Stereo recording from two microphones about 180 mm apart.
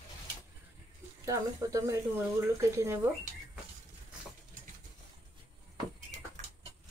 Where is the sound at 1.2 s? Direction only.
20° right (ahead or behind).